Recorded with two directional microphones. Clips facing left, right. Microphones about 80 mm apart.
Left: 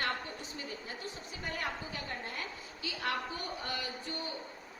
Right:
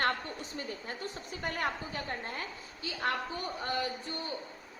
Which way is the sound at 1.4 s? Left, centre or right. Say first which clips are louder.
Right 4 dB; right.